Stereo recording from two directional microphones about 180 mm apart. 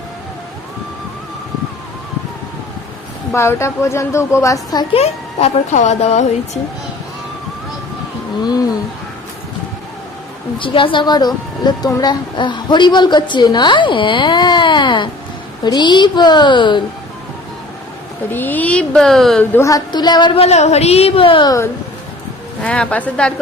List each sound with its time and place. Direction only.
3.3 s a woman's voice: 15° left (ahead or behind)
4.9 s a child's voice: 40° left (ahead or behind)
10.6 s a woman's voice: 30° left (ahead or behind)
18.3 s a woman's voice: 10° left (ahead or behind)
19.5 s a woman's voice: 20° left (ahead or behind)
22.6 s a woman's voice: 5° left (ahead or behind)